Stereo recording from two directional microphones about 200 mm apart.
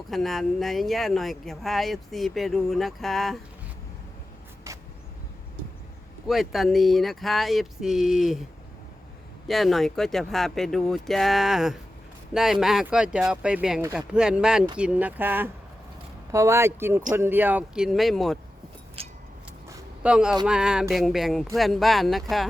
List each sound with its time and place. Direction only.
0.1 s speech: centre (ahead or behind)
6.2 s speech: centre (ahead or behind)
9.5 s speech: centre (ahead or behind)
19.0 s a sound: 30° right (ahead or behind)
20.0 s speech: 5° right (ahead or behind)